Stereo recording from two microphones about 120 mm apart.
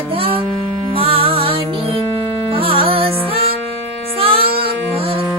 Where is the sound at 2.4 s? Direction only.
50° right (ahead or behind).